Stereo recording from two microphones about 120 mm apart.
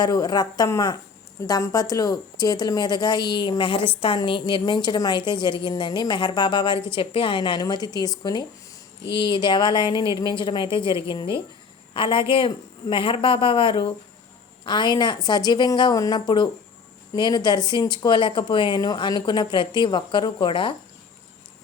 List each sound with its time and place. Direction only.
0.0 s speech: 35° left (ahead or behind)